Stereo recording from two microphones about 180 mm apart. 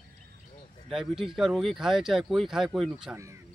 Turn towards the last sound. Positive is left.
turn(degrees=-15)  # may be behind; listen again after turning